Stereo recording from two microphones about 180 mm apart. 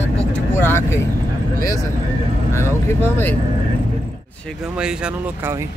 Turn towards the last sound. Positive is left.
turn(degrees=-5)  # may be behind; listen again after turning